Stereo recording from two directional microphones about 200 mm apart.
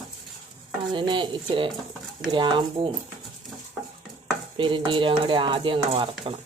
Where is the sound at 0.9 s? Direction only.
25° right (ahead or behind).